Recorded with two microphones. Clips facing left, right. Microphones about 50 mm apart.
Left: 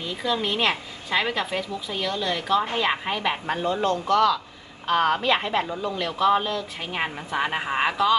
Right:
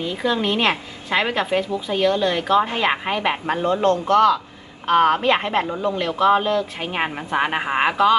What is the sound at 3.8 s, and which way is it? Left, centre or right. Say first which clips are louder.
A woman's voice: right 5 dB; right.